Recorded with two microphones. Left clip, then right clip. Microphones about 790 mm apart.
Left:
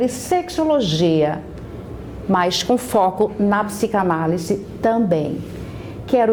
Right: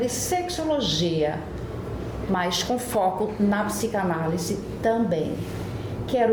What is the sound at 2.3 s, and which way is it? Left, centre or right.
A woman's voice, left.